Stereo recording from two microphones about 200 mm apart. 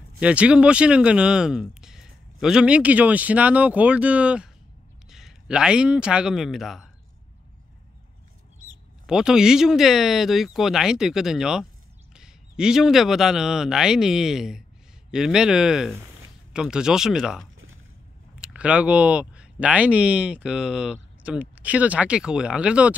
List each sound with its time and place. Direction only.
0.2 s speech: 5° right (ahead or behind)
9.0 s speech: 5° right (ahead or behind)